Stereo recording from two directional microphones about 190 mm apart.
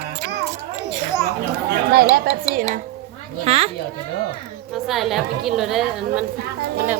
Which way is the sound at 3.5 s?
30° right (ahead or behind).